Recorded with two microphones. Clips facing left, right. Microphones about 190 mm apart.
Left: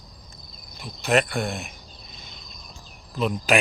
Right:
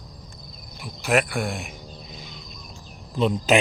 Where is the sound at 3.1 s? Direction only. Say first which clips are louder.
Right 3 dB; 25° right (ahead or behind).